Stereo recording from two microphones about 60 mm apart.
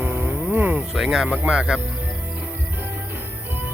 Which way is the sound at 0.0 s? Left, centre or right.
Right.